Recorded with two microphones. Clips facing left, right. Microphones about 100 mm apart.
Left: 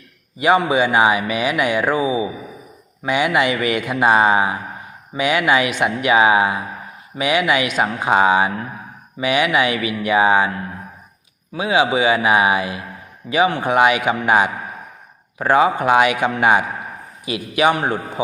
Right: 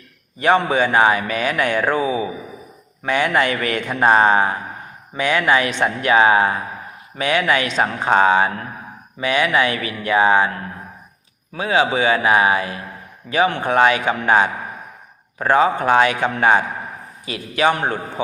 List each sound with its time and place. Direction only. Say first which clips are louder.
0.3 s speech: left 1 dB; 10° left (ahead or behind)
11.5 s speech: left 1 dB; 15° left (ahead or behind)